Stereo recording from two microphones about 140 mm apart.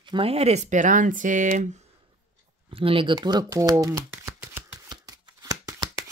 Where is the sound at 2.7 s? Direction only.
40° right (ahead or behind).